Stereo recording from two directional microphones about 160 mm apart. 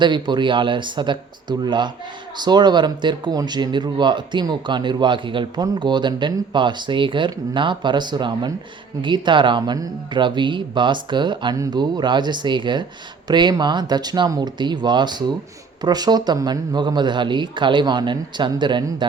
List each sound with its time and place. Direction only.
0.0 s speech: 30° right (ahead or behind)